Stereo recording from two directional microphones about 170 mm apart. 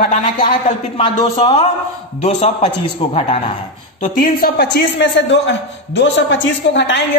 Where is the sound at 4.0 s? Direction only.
60° left (ahead or behind).